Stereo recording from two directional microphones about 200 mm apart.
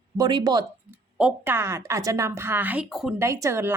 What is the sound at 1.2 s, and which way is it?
A woman's voice, 10° right (ahead or behind).